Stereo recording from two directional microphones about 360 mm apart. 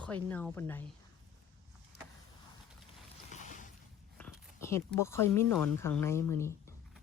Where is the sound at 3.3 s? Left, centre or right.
Left.